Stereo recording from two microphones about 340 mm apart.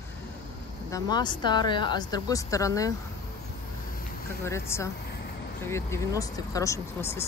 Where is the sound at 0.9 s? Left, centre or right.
Centre.